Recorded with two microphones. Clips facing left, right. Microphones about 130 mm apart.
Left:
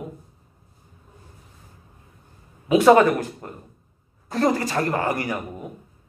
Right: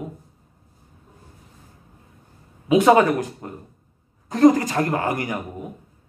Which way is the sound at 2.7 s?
15° right (ahead or behind).